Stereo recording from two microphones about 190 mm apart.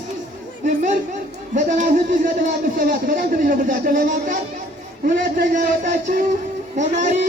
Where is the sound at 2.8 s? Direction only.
45° right (ahead or behind).